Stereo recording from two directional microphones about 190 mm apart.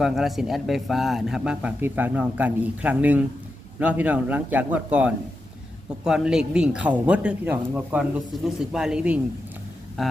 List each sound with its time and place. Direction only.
0.0 s a man's voice: centre (ahead or behind)